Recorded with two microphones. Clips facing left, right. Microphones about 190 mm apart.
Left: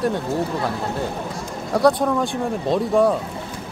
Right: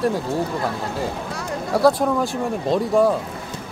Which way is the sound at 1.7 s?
Centre (ahead or behind).